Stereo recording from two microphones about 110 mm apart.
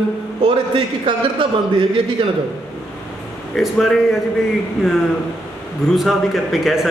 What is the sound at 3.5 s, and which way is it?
Speech, centre (ahead or behind).